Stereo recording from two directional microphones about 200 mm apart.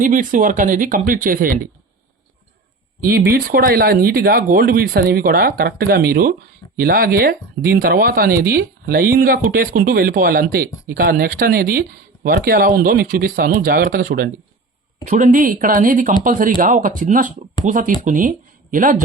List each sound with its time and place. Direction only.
0.0 s speech: 40° right (ahead or behind)
3.0 s speech: 50° right (ahead or behind)